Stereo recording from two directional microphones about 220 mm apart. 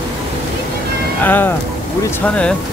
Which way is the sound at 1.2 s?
10° left (ahead or behind).